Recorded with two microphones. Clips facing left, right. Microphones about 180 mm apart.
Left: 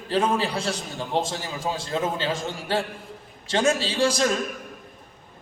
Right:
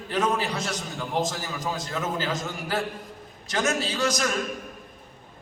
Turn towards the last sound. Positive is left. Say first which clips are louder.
# left 4 dB
turn(degrees=30)  # may be behind; listen again after turning